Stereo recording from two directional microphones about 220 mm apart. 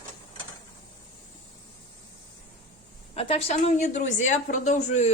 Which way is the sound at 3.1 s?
25° left (ahead or behind).